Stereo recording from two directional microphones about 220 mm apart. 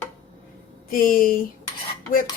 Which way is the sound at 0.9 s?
40° left (ahead or behind).